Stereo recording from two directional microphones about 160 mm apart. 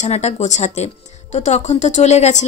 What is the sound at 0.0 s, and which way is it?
A woman's voice, 40° left (ahead or behind).